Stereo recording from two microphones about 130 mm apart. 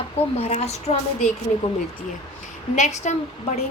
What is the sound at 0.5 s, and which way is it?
Speech, 55° left (ahead or behind).